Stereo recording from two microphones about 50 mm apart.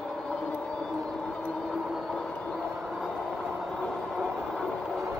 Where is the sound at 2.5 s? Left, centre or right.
Centre.